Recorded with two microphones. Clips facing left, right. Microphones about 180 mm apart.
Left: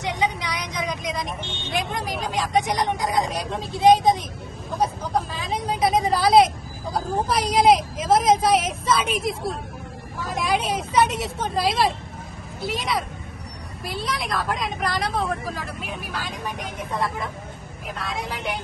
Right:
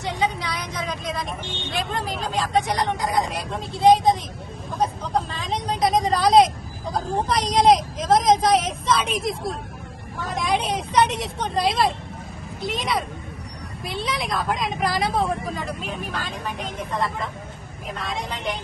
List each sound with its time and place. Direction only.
0.0 s vehicle: 15° left (ahead or behind)
1.7 s speech: 15° left (ahead or behind)
4.8 s speech: 5° left (ahead or behind)
17.9 s speech: centre (ahead or behind)